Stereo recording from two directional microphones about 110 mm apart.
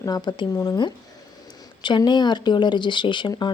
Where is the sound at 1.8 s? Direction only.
45° left (ahead or behind).